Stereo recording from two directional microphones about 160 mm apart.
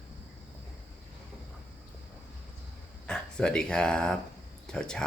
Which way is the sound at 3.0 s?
5° left (ahead or behind).